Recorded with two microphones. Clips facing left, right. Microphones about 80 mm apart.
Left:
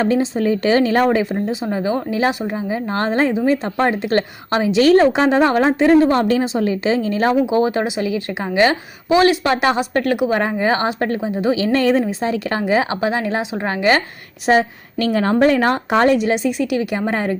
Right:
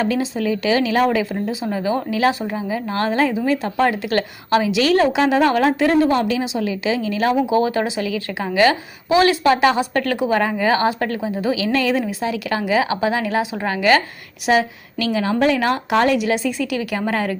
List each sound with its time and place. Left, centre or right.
0.0 s a woman's voice: left
6.1 s a woman's voice: left
7.4 s a woman's voice: left
11.5 s a woman's voice: left